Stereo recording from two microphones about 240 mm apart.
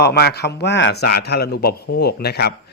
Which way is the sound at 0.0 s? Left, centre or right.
Left.